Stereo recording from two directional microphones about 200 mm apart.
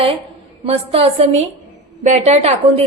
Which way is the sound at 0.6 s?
30° right (ahead or behind).